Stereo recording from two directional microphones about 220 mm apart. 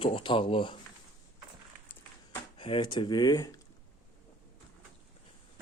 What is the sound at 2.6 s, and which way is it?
Speech, 25° left (ahead or behind).